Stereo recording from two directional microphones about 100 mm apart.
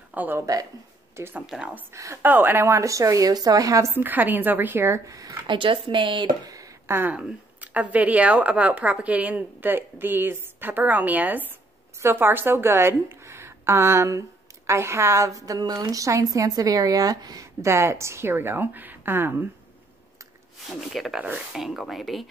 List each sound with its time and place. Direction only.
0.1 s speech: 20° right (ahead or behind)
1.4 s speech: 5° right (ahead or behind)
1.9 s a woman's voice: 30° right (ahead or behind)
2.2 s a woman's voice: 20° right (ahead or behind); by 3.9 s 35° right (ahead or behind)
3.9 s a woman's voice: 20° right (ahead or behind)
5.5 s speech: 60° right (ahead or behind)
6.9 s a woman's voice: 20° right (ahead or behind)
20.7 s speech: centre (ahead or behind)